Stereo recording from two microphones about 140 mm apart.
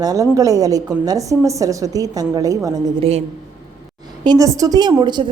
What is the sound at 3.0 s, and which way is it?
Speech, 50° right (ahead or behind).